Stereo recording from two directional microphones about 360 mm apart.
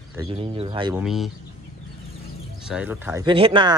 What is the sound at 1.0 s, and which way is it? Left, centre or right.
Speech, centre.